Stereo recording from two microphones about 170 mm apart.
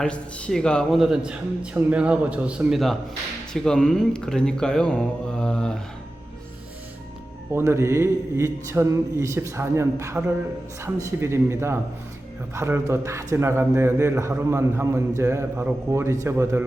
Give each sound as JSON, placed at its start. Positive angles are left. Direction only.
{"t": 0.0, "sound": "speech", "side_deg": 5}
{"t": 7.5, "sound": "a man's voice", "side_deg": -15}